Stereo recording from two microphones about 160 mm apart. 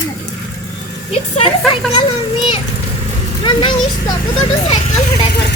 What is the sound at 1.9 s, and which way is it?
A child's voice, 30° left (ahead or behind).